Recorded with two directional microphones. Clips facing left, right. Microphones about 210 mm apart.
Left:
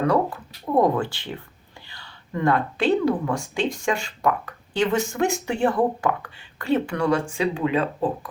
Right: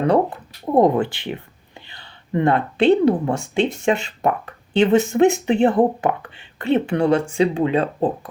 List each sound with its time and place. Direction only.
0.1 s speech: 20° right (ahead or behind)